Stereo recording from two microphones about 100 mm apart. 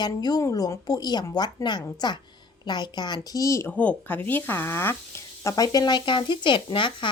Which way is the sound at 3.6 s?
15° left (ahead or behind).